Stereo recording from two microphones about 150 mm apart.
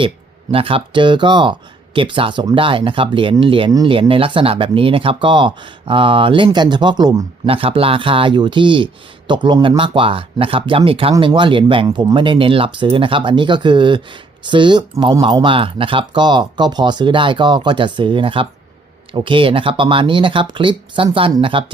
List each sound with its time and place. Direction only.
0.5 s speech: 35° right (ahead or behind)
3.7 s speech: 25° right (ahead or behind)
4.1 s speech: 35° right (ahead or behind)
7.4 s speech: 40° right (ahead or behind)